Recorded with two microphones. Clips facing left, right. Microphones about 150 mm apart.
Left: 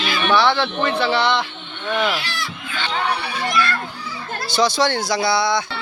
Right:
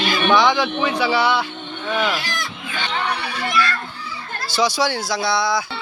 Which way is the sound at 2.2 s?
45° right (ahead or behind).